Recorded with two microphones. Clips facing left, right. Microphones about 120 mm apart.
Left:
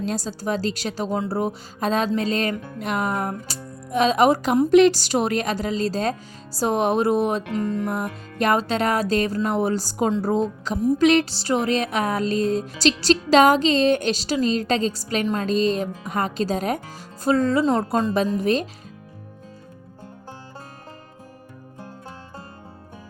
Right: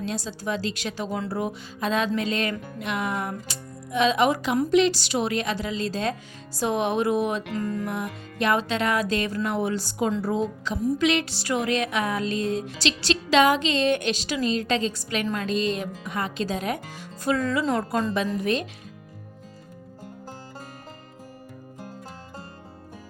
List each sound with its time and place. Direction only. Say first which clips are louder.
0.0 s music: left 4 dB; 40° left (ahead or behind)
4.7 s music: left 6 dB; 50° left (ahead or behind)
7.5 s music: left 4 dB; 20° left (ahead or behind)
7.9 s music: left 4 dB; 40° left (ahead or behind); by 18.1 s 25° left (ahead or behind)
18.3 s music: left 4 dB; 35° left (ahead or behind)